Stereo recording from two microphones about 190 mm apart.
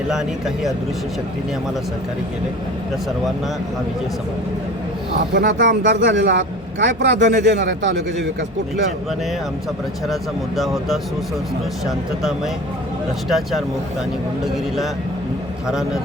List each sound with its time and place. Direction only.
0.1 s speech: centre (ahead or behind)
5.3 s a man's voice: 60° right (ahead or behind)
10.6 s speech: centre (ahead or behind)
13.2 s speech: centre (ahead or behind)